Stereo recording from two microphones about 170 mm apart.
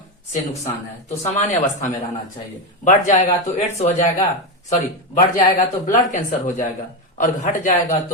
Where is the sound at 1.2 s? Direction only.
40° left (ahead or behind).